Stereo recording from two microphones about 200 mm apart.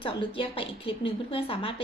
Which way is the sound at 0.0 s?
25° left (ahead or behind).